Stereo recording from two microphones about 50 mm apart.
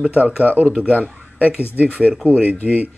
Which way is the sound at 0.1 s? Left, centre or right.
Right.